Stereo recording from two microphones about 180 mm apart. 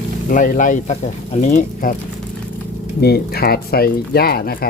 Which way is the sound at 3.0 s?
60° left (ahead or behind).